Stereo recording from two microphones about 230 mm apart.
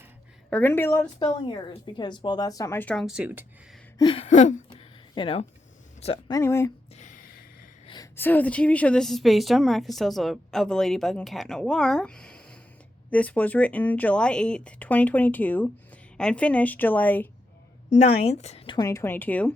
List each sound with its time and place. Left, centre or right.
0.5 s speech: centre
3.9 s a woman's voice: left
4.7 s a sound: left
6.0 s speech: left
6.3 s speech: centre
6.9 s a sound: left
7.9 s a woman's voice: centre
17.8 s a woman's voice: left; by 19.5 s centre